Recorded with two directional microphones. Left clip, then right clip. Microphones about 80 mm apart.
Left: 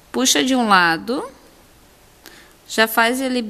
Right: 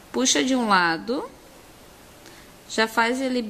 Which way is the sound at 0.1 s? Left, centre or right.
Left.